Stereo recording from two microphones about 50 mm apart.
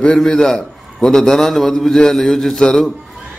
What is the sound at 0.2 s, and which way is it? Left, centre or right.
A man's voice, centre.